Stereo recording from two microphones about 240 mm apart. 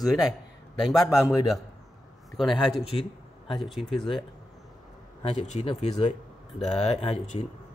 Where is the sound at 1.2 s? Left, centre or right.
Centre.